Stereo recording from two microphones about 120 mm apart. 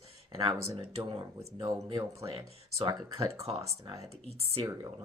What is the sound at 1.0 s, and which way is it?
Speech, 50° right (ahead or behind).